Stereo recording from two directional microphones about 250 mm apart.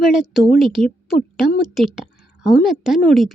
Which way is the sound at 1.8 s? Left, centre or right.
Centre.